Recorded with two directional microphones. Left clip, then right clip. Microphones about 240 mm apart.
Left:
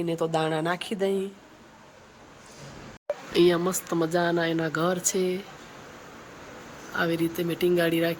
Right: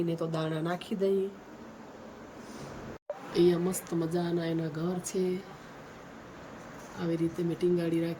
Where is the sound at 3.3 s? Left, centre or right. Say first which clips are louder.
Left 4 dB; centre.